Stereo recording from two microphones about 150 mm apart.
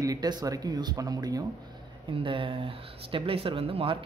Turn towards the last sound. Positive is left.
turn(degrees=-40)  # may be behind; listen again after turning